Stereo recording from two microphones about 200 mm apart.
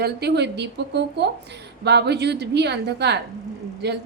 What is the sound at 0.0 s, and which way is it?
A woman's voice, 55° right (ahead or behind).